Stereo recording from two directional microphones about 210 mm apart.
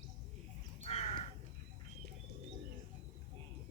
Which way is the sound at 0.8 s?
30° left (ahead or behind).